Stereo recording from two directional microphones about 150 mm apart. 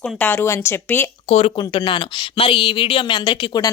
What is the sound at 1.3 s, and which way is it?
Speech, 40° left (ahead or behind).